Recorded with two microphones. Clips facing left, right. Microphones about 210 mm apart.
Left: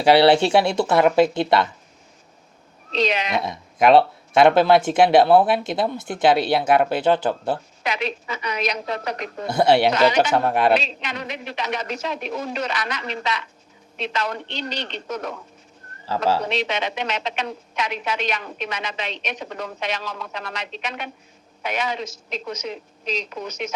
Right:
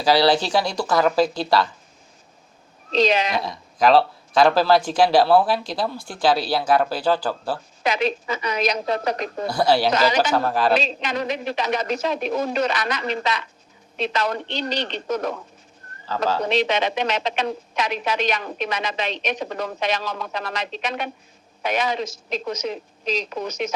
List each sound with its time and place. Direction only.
0.0 s speech: 25° left (ahead or behind)
3.0 s a woman's voice: 35° right (ahead or behind)
3.3 s speech: 25° left (ahead or behind)
7.9 s a woman's voice: 35° right (ahead or behind)
9.5 s speech: 25° left (ahead or behind)
10.8 s a woman's voice: 35° right (ahead or behind)
16.0 s speech: 30° left (ahead or behind)
16.5 s a woman's voice: 35° right (ahead or behind)